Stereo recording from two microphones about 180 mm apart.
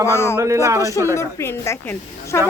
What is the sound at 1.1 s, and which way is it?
A woman's voice, 15° left (ahead or behind).